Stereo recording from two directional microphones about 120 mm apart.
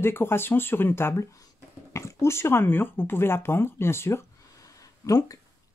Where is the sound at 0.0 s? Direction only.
20° left (ahead or behind).